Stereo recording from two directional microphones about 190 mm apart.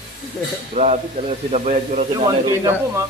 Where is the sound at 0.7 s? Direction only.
35° right (ahead or behind).